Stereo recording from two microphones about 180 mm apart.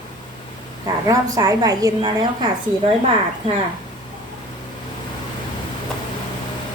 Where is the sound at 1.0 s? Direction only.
20° right (ahead or behind).